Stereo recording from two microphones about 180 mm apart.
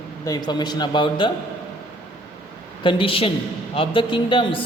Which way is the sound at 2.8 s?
30° left (ahead or behind).